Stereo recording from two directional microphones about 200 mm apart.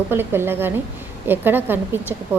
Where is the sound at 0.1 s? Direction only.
10° right (ahead or behind).